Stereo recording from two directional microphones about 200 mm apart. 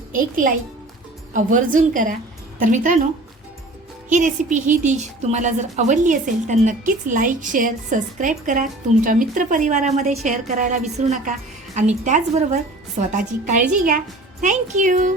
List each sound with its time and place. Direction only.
0.1 s a woman's voice: 40° right (ahead or behind)
1.5 s a woman's voice: 40° right (ahead or behind)
4.1 s a woman's voice: 40° right (ahead or behind)